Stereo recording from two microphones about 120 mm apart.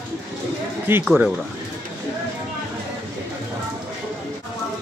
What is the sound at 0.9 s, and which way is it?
Speech, 20° right (ahead or behind).